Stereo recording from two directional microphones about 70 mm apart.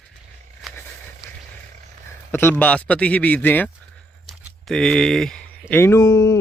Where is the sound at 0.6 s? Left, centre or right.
Centre.